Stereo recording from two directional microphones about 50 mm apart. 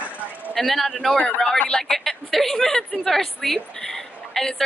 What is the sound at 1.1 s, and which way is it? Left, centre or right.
Speech, left.